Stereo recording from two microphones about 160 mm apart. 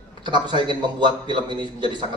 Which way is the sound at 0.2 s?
30° right (ahead or behind).